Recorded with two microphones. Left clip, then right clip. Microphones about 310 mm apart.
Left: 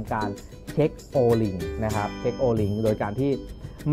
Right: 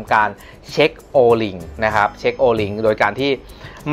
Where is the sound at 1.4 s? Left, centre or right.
Centre.